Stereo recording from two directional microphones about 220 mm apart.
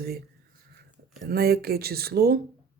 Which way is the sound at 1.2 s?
45° right (ahead or behind).